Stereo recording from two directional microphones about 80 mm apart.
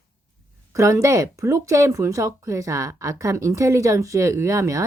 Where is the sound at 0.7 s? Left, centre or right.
Right.